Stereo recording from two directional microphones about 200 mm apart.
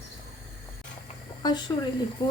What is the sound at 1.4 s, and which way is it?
Speech, 20° left (ahead or behind).